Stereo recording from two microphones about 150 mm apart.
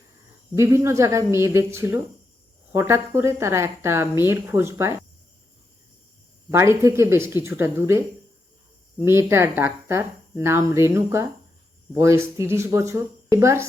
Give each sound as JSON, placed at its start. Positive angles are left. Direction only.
{"t": 0.5, "sound": "speech", "side_deg": -20}
{"t": 6.5, "sound": "speech", "side_deg": -20}